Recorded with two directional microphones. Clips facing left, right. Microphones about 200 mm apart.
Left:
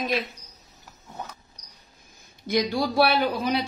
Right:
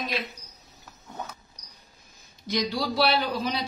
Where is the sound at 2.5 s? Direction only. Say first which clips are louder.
Left 4 dB; 50° left (ahead or behind).